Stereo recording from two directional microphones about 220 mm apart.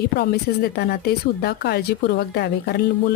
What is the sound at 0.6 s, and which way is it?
A woman's voice, 45° left (ahead or behind).